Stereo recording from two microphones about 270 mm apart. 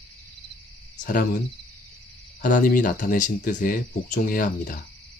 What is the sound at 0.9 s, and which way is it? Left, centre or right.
Speech, left.